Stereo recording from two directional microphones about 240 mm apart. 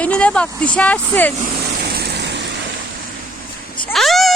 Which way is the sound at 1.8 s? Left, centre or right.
Right.